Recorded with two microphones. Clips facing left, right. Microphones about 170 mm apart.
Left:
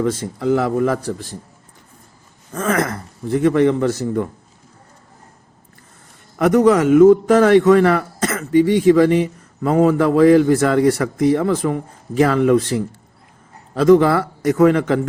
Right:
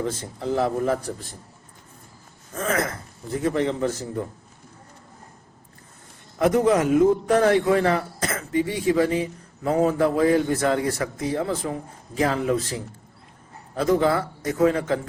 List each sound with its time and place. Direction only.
0.0 s a man's voice: 90° left
2.6 s a man's voice: 85° left
6.4 s a man's voice: 80° left